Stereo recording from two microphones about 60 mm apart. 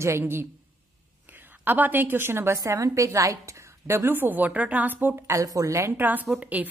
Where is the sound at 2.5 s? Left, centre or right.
Right.